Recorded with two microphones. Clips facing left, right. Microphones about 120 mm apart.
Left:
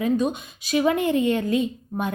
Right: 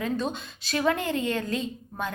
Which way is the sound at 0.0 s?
15° left (ahead or behind).